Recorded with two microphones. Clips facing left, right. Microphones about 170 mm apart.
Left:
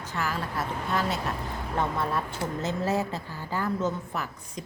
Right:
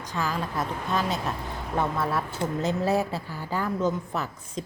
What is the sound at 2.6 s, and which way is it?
A woman's voice, 15° right (ahead or behind).